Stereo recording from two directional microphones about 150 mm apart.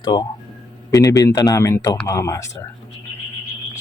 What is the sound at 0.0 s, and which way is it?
Speech, 30° left (ahead or behind).